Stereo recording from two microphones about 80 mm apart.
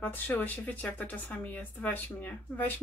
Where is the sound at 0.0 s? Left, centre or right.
Left.